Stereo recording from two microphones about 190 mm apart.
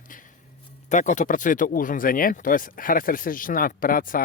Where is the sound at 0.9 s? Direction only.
40° left (ahead or behind).